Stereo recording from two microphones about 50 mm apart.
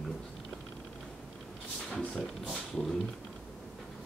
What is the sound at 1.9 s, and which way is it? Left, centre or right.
Speech, centre.